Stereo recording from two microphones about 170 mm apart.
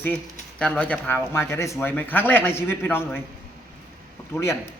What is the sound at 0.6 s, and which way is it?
A man's voice, 5° left (ahead or behind).